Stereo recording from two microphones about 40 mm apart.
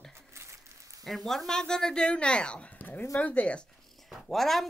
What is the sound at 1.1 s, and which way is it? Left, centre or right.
A woman's voice, centre.